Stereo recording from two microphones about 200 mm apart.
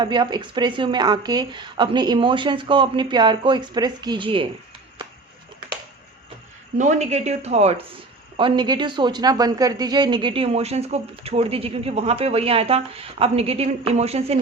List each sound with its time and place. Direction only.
0.0 s speech: 20° right (ahead or behind)
6.7 s speech: 35° right (ahead or behind)